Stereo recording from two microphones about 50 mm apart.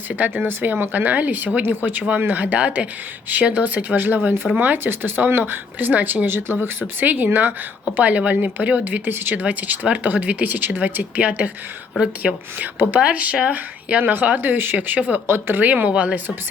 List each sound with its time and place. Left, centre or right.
0.1 s speech: right
0.4 s a woman's voice: right
6.2 s a woman's voice: right
8.8 s speech: right
9.3 s a woman's voice: right
15.3 s speech: right
15.6 s a woman's voice: right